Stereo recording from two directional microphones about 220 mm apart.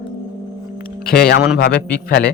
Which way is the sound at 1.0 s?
45° left (ahead or behind).